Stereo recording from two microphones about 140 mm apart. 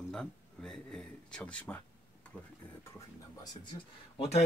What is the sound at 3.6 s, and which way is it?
Speech, 35° left (ahead or behind).